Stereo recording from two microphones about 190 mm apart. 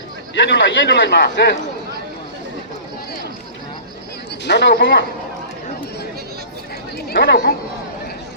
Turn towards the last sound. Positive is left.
turn(degrees=65)  # may be behind; listen again after turning